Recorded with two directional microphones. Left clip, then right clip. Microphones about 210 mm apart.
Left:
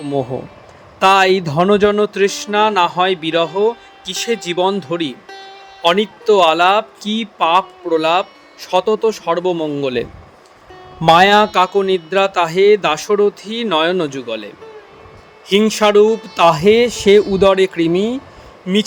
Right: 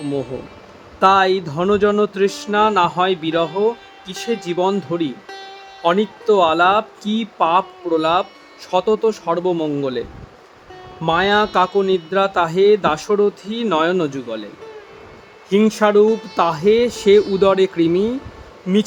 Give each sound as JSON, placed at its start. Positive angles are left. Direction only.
{"t": 0.0, "sound": "speech", "side_deg": 5}
{"t": 0.9, "sound": "speech", "side_deg": 20}
{"t": 5.3, "sound": "music", "side_deg": 0}
{"t": 5.8, "sound": "speech", "side_deg": 20}
{"t": 11.0, "sound": "speech", "side_deg": 20}
{"t": 15.4, "sound": "speech", "side_deg": 20}